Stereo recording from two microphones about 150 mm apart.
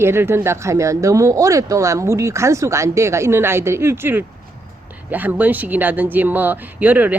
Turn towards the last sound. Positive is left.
turn(degrees=-10)  # may be behind; listen again after turning